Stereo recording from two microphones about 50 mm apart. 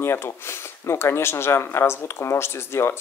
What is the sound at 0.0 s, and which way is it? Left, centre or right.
Speech, left.